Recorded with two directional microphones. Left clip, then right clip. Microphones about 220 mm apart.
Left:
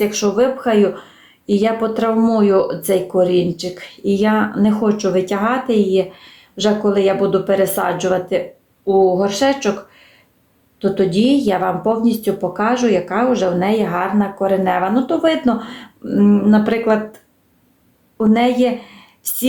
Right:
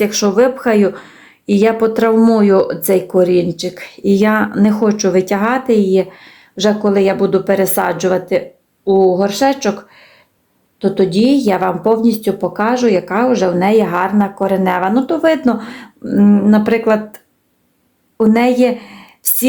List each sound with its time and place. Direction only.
0.0 s speech: 35° right (ahead or behind)
10.8 s speech: 25° right (ahead or behind)
18.2 s a woman's voice: 35° right (ahead or behind)